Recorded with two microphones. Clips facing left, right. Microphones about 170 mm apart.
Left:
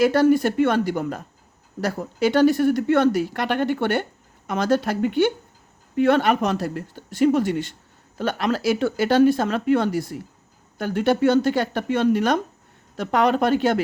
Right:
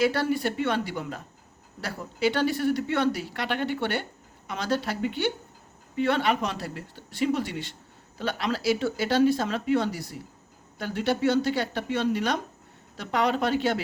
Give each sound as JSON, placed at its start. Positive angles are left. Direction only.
{"t": 0.0, "sound": "speech", "side_deg": 45}